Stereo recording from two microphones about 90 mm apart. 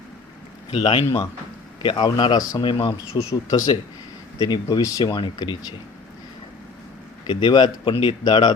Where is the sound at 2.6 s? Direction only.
60° left (ahead or behind).